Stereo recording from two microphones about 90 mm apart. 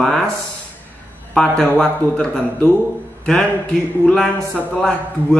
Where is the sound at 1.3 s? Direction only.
10° left (ahead or behind).